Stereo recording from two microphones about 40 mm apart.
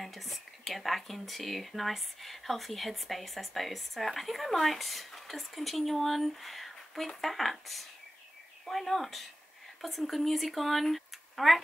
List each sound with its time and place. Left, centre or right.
0.0 s speech: centre